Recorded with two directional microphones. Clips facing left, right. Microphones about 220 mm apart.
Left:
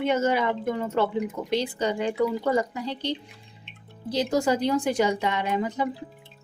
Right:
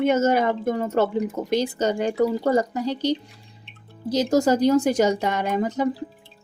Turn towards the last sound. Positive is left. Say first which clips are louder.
# right 4 dB
turn(degrees=-45)  # may be behind; listen again after turning